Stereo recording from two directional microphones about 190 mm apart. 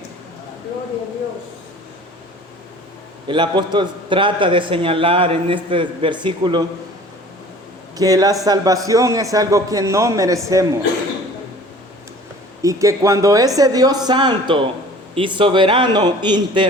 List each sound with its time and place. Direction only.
3.2 s a man's voice: 25° right (ahead or behind)
7.9 s a man's voice: 20° right (ahead or behind)
12.6 s a man's voice: 15° right (ahead or behind)